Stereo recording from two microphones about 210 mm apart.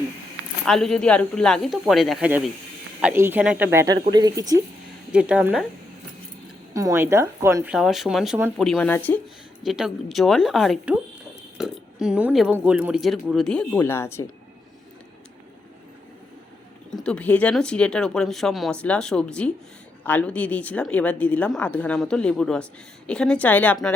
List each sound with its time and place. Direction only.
0.6 s speech: centre (ahead or behind); by 4.6 s 15° right (ahead or behind)
5.1 s speech: 5° right (ahead or behind)
6.7 s a woman's voice: 15° right (ahead or behind); by 9.2 s 10° left (ahead or behind)
9.6 s speech: centre (ahead or behind)
16.9 s a woman's voice: 5° left (ahead or behind)